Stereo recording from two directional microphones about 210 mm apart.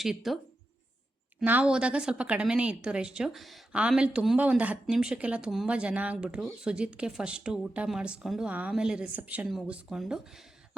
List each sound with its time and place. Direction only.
0.0 s speech: centre (ahead or behind)
1.4 s speech: 5° right (ahead or behind)